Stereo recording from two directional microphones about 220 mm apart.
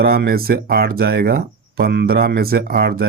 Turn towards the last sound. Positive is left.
turn(degrees=-45)  # may be behind; listen again after turning